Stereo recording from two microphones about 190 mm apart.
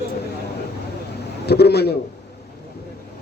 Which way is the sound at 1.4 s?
60° left (ahead or behind).